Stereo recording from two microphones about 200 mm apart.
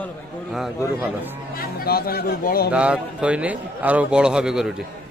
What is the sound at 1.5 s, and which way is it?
Speech, 50° left (ahead or behind).